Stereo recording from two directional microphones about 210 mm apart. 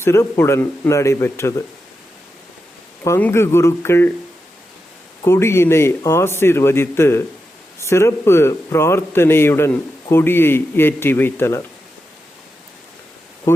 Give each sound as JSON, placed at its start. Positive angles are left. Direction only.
{"t": 0.0, "sound": "speech", "side_deg": 10}
{"t": 3.0, "sound": "speech", "side_deg": 10}
{"t": 5.2, "sound": "speech", "side_deg": 10}